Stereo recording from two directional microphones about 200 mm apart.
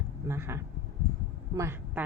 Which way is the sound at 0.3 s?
10° right (ahead or behind).